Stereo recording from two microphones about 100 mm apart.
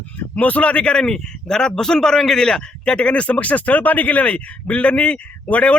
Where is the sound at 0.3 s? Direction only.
15° left (ahead or behind).